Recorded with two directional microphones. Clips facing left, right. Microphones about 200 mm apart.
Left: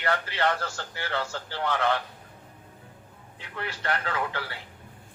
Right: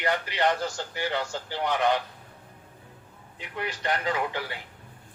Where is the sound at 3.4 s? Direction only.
15° right (ahead or behind).